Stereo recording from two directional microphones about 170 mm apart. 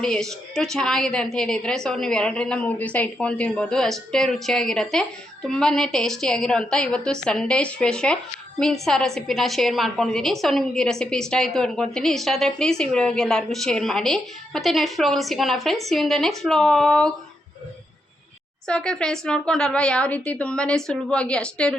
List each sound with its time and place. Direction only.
0.0 s a woman's voice: 5° left (ahead or behind)
18.7 s a woman's voice: 5° left (ahead or behind)